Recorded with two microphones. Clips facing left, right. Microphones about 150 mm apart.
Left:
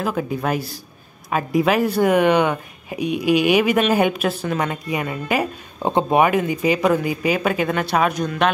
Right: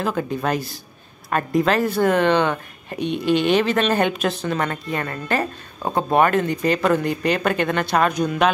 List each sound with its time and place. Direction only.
0.0 s speech: 5° left (ahead or behind)
5.8 s speech: 20° left (ahead or behind)
6.0 s speech: 10° left (ahead or behind)